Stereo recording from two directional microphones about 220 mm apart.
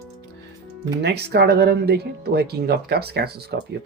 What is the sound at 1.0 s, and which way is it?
Speech, 50° right (ahead or behind).